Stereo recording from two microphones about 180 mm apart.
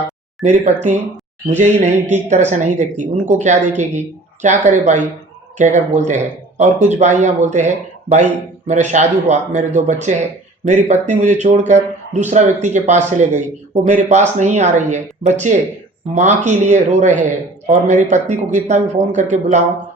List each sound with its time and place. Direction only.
0.4 s a man's voice: 40° right (ahead or behind)